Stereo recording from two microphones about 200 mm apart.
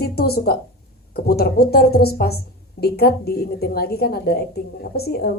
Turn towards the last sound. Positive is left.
turn(degrees=50)  # may be behind; listen again after turning